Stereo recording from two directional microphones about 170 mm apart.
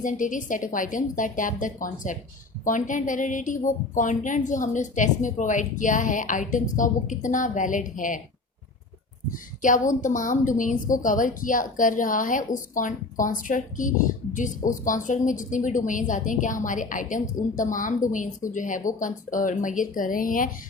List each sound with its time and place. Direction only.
0.0 s a woman's voice: 50° left (ahead or behind)
9.3 s a woman's voice: 50° left (ahead or behind)